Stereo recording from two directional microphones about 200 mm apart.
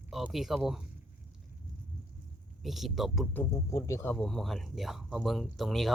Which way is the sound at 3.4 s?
15° left (ahead or behind).